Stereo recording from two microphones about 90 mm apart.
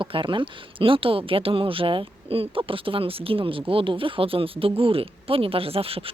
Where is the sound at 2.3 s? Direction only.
85° right.